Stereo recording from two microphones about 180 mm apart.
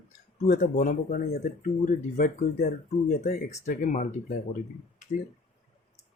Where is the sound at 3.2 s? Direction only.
60° left (ahead or behind).